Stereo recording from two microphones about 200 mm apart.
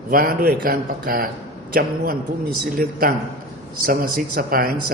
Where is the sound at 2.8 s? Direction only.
50° right (ahead or behind).